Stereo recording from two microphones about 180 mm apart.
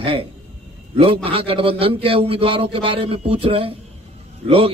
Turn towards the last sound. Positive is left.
turn(degrees=-30)  # may be behind; listen again after turning